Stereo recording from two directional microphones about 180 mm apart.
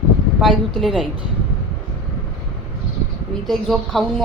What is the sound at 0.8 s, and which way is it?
Speech, centre (ahead or behind).